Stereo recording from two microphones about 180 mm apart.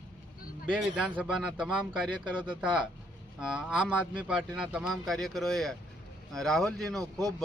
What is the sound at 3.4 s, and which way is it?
Speech, 5° right (ahead or behind).